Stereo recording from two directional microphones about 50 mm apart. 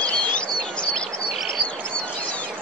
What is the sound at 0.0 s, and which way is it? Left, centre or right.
Bird, left.